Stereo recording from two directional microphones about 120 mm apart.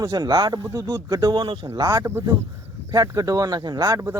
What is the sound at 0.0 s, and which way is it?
Speech, 30° right (ahead or behind).